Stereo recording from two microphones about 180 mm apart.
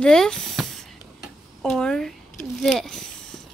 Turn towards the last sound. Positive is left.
turn(degrees=5)  # may be behind; listen again after turning